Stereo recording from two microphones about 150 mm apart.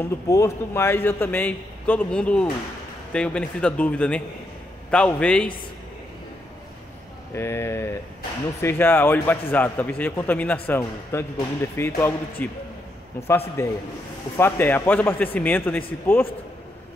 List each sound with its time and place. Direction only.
0.0 s a man's voice: 20° left (ahead or behind)
7.3 s a man's voice: 15° left (ahead or behind)
13.6 s a man's voice: 20° left (ahead or behind)